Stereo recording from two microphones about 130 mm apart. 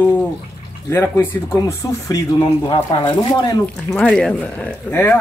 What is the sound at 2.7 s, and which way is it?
Speech, 35° left (ahead or behind).